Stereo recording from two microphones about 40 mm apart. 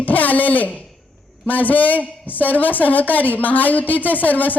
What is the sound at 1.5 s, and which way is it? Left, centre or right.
A woman's voice, left.